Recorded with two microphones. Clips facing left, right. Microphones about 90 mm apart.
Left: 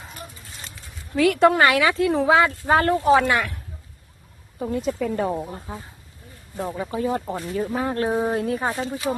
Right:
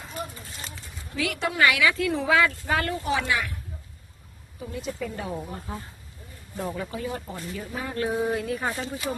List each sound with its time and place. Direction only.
1.1 s speech: 45° left (ahead or behind)
4.6 s speech: 55° left (ahead or behind)
6.7 s speech: 25° left (ahead or behind)